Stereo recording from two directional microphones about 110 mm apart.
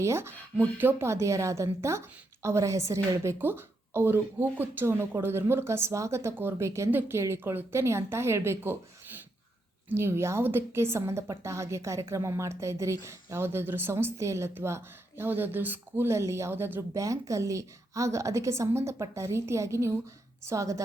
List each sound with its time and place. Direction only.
0.0 s a woman's voice: 25° right (ahead or behind)
9.9 s a woman's voice: 25° right (ahead or behind)